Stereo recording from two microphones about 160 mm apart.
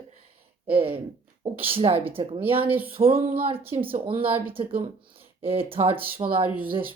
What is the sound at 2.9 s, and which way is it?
Speech, 35° right (ahead or behind).